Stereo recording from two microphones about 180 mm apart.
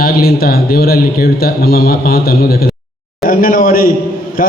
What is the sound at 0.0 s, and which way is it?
A man's voice, 55° left (ahead or behind).